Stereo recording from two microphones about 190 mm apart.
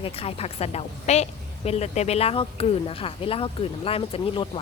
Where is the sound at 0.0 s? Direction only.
30° left (ahead or behind).